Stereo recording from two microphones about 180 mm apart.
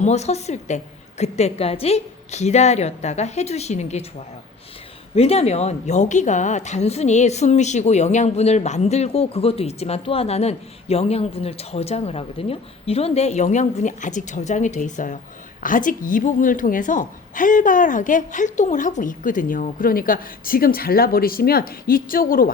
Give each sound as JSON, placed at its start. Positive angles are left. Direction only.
{"t": 0.0, "sound": "speech", "side_deg": 40}
{"t": 5.1, "sound": "a woman's voice", "side_deg": 35}